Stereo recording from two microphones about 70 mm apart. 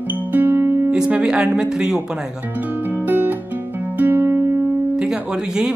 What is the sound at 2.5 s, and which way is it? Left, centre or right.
Music, right.